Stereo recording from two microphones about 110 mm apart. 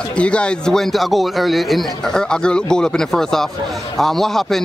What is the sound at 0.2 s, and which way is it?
Speech, 10° left (ahead or behind).